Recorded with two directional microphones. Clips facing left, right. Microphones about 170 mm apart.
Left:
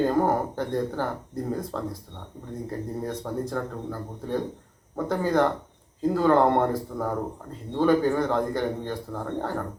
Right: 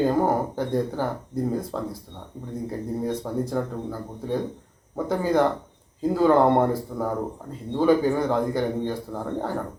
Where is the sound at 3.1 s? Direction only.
10° right (ahead or behind).